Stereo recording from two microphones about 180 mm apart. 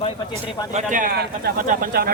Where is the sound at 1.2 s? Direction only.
55° right (ahead or behind).